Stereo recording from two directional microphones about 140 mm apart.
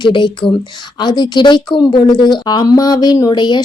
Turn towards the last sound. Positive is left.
turn(degrees=30)  # may be behind; listen again after turning